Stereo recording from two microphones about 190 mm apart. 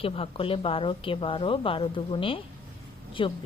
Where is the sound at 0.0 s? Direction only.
30° left (ahead or behind).